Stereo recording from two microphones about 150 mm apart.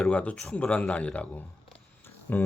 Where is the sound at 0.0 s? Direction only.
10° left (ahead or behind).